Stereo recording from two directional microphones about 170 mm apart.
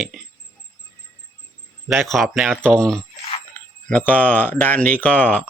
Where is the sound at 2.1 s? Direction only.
Centre (ahead or behind).